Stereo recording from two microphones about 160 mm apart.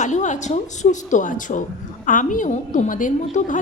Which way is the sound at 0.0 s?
50° left (ahead or behind).